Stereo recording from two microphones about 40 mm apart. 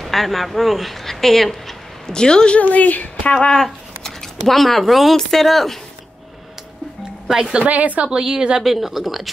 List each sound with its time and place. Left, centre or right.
0.0 s speech: centre
2.1 s a woman's voice: centre
2.6 s speech: left
3.5 s a sound: centre
4.6 s speech: centre
5.1 s speech: centre
7.2 s speech: centre
7.6 s a woman's voice: right
8.0 s a woman's voice: centre
8.6 s speech: centre